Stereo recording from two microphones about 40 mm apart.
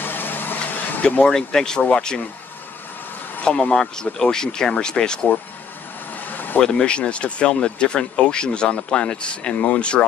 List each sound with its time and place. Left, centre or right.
0.0 s vehicle: left
1.2 s speech: centre
3.7 s speech: centre
6.2 s a sound: left
6.6 s speech: left